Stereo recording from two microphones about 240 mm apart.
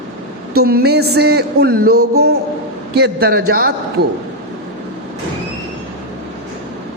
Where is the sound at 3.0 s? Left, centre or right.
Right.